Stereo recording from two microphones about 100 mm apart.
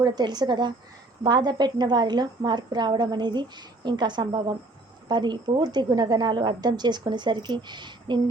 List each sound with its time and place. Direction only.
0.0 s a woman's voice: 45° right (ahead or behind)